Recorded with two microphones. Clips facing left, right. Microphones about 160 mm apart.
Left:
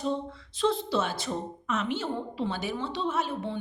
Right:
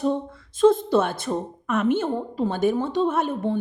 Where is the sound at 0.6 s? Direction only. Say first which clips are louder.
Right 9 dB; 50° right (ahead or behind).